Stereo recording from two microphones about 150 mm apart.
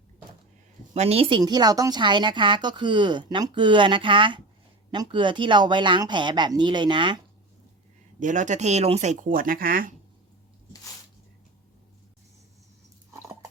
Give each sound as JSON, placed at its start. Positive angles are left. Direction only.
{"t": 0.9, "sound": "speech", "side_deg": -40}
{"t": 1.4, "sound": "speech", "side_deg": -25}
{"t": 8.2, "sound": "speech", "side_deg": -55}